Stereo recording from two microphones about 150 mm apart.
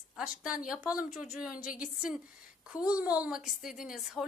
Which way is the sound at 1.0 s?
60° left (ahead or behind).